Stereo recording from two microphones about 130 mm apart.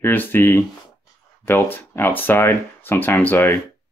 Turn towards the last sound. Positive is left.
turn(degrees=15)  # may be behind; listen again after turning